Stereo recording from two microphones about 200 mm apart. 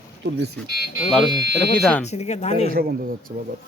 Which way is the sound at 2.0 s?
35° left (ahead or behind).